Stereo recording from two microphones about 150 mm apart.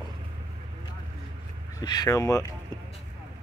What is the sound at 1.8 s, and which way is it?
Speech, 25° left (ahead or behind).